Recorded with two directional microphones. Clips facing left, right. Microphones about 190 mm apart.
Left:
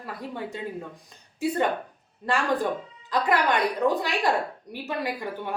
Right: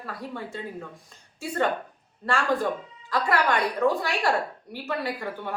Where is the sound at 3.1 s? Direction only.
20° left (ahead or behind).